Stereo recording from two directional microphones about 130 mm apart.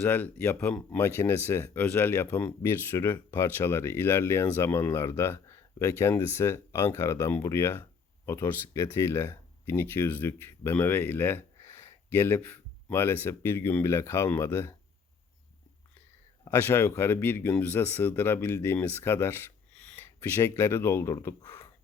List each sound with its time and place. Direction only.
0.0 s speech: 10° left (ahead or behind)
16.5 s speech: 20° left (ahead or behind)